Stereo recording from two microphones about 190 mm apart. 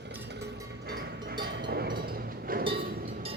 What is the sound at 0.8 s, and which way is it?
Vehicle, 55° right (ahead or behind).